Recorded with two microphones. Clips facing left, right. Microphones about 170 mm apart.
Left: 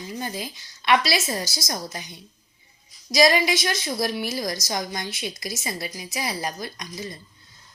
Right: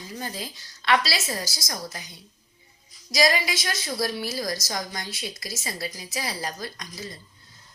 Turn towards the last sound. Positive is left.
turn(degrees=20)  # may be behind; listen again after turning